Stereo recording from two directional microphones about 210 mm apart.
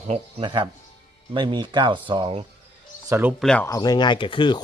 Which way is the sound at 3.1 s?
10° right (ahead or behind).